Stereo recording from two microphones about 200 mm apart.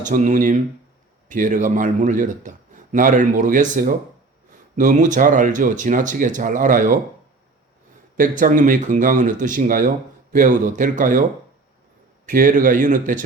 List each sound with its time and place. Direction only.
0.0 s a man's voice: 40° right (ahead or behind)
8.1 s a man's voice: 40° right (ahead or behind)
12.2 s a man's voice: 40° right (ahead or behind)